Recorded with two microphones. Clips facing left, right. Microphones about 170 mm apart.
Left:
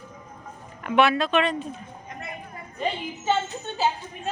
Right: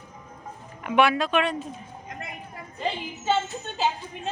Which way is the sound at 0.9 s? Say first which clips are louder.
Left 1 dB; 10° right (ahead or behind).